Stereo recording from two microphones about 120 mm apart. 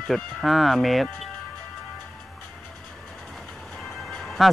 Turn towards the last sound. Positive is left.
turn(degrees=5)  # may be behind; listen again after turning